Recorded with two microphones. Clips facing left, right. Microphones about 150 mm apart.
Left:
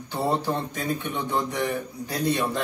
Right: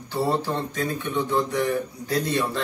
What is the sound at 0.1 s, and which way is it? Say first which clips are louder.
A man's voice: right 1 dB; 15° left (ahead or behind).